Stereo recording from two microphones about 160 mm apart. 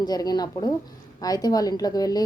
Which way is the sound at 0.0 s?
25° left (ahead or behind).